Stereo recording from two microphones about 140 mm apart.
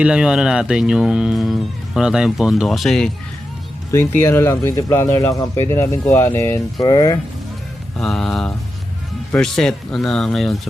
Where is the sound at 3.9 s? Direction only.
20° left (ahead or behind).